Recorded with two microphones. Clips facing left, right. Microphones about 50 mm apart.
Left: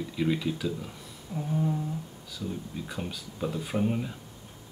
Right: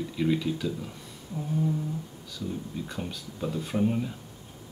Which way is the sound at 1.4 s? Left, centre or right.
Left.